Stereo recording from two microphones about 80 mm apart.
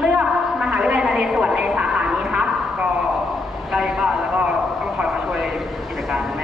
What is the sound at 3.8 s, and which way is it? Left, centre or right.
Vehicle, centre.